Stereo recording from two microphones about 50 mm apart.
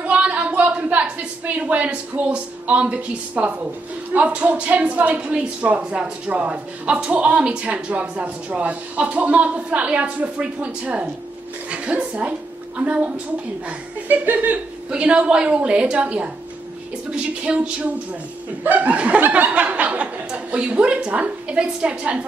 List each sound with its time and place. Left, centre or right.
0.0 s a sound: right
1.4 s speech: right
14.9 s speech: right